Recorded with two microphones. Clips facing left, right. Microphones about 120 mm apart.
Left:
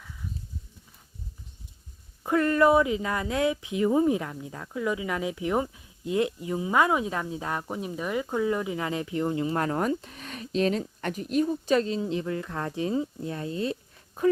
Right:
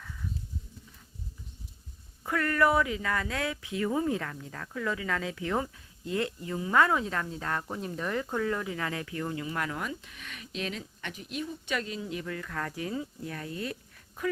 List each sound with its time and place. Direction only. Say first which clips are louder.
2.2 s speech: left 5 dB; 20° left (ahead or behind)